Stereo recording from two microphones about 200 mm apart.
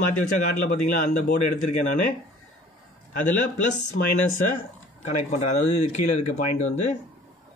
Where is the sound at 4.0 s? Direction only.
45° left (ahead or behind).